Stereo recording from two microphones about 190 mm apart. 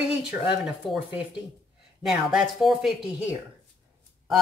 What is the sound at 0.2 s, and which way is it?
Speech, 5° right (ahead or behind).